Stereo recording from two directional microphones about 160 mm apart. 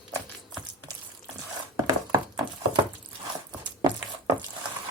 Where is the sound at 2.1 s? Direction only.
25° right (ahead or behind).